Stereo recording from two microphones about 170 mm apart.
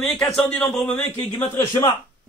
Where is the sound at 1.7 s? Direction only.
25° left (ahead or behind).